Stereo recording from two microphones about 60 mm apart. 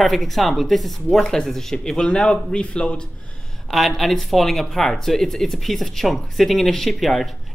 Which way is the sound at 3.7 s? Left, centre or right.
Centre.